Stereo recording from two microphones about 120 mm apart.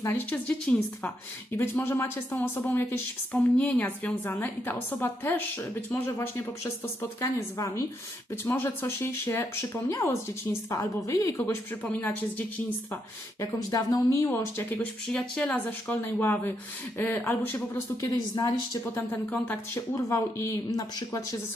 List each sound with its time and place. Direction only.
0.3 s a woman's voice: 10° left (ahead or behind)
13.4 s a woman's voice: 30° left (ahead or behind)
18.9 s a woman's voice: 15° left (ahead or behind)